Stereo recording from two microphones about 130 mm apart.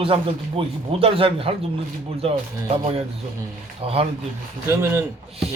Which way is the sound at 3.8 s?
50° right (ahead or behind).